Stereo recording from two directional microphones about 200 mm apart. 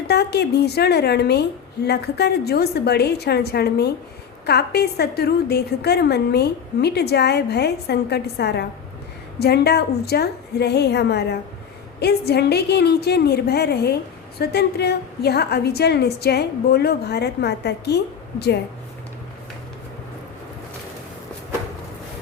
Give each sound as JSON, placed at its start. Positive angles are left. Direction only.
{"t": 0.1, "sound": "a woman's voice", "side_deg": 55}